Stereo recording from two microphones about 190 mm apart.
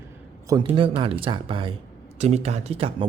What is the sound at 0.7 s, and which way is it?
Speech, 25° right (ahead or behind).